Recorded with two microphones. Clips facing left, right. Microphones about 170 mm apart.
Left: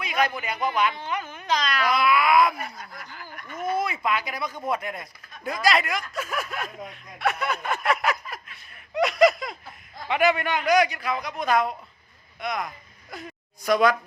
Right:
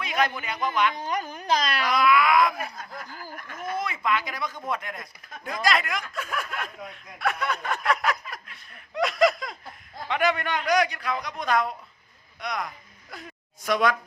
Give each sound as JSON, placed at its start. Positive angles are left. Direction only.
{"t": 0.0, "sound": "speech", "side_deg": 10}
{"t": 0.9, "sound": "speech", "side_deg": -40}
{"t": 2.0, "sound": "a sound", "side_deg": 10}
{"t": 3.1, "sound": "snicker", "side_deg": -40}
{"t": 3.8, "sound": "a man's voice", "side_deg": 10}
{"t": 9.0, "sound": "a sound", "side_deg": 0}
{"t": 10.1, "sound": "a man's voice", "side_deg": 5}